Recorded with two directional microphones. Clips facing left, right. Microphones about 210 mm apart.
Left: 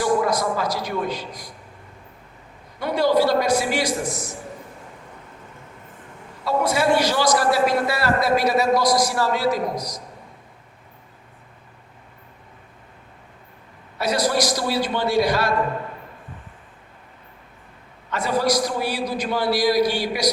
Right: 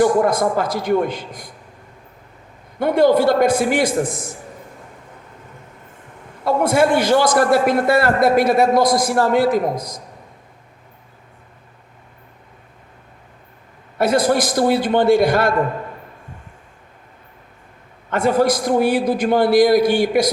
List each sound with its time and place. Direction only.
0.0 s a man's voice: 50° right (ahead or behind)
2.7 s a man's voice: 50° right (ahead or behind)
6.4 s a man's voice: 50° right (ahead or behind)
14.0 s a man's voice: 50° right (ahead or behind)
18.1 s a man's voice: 50° right (ahead or behind)